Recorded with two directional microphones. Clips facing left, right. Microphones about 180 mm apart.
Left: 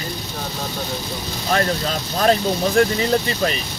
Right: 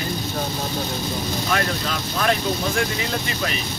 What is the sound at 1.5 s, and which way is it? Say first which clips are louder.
Speech: left 7 dB; 35° left (ahead or behind).